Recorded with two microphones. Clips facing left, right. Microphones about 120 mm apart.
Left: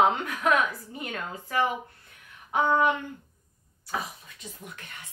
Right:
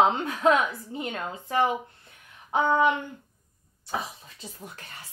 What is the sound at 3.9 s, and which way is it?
Speech, 35° right (ahead or behind).